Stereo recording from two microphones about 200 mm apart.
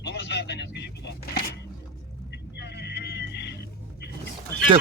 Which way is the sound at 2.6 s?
55° left (ahead or behind).